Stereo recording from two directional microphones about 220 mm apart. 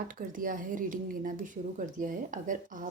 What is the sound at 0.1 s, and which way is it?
Speech, 40° right (ahead or behind).